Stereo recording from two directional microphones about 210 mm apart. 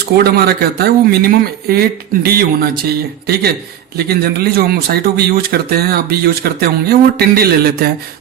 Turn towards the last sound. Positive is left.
turn(degrees=-45)  # may be behind; listen again after turning